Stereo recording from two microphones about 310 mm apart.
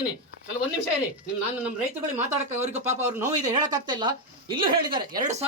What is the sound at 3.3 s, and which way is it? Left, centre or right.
Speech, right.